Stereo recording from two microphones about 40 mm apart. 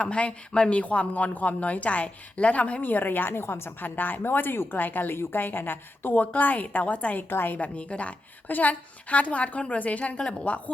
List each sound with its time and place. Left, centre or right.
0.0 s speech: left
2.8 s a woman's voice: left
3.8 s a woman's voice: left
4.7 s a woman's voice: left
6.3 s speech: left
7.2 s a woman's voice: left
7.5 s speech: left
8.4 s speech: left